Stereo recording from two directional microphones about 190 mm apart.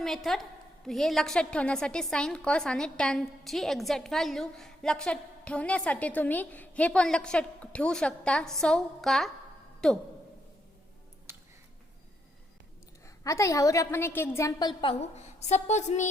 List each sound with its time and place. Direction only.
0.0 s a woman's voice: centre (ahead or behind)
11.3 s music: 15° right (ahead or behind)
13.2 s a woman's voice: 15° left (ahead or behind); by 16.0 s 35° left (ahead or behind)